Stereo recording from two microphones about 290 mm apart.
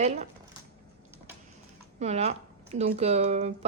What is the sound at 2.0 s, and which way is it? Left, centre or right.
Speech, right.